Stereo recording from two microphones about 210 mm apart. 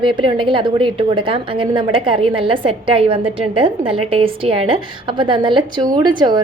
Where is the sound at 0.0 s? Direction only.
25° right (ahead or behind).